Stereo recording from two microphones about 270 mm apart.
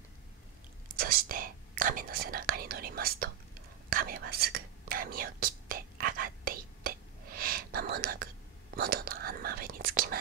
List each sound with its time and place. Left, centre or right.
0.9 s speech: right
3.9 s whispering: right